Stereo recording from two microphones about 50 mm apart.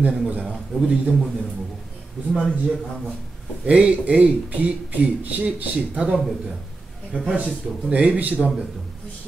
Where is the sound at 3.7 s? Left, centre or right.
Right.